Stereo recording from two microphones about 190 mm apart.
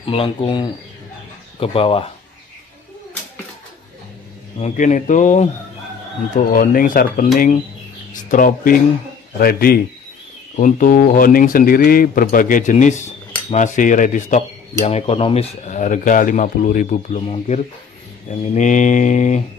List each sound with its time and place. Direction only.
0.0 s speech: 30° left (ahead or behind)
4.6 s speech: 40° left (ahead or behind)